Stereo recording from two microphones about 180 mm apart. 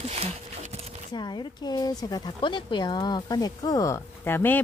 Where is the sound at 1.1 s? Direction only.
25° left (ahead or behind).